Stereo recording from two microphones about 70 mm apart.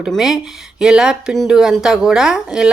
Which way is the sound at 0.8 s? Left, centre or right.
Centre.